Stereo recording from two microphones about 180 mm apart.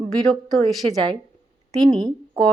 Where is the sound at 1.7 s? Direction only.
25° right (ahead or behind).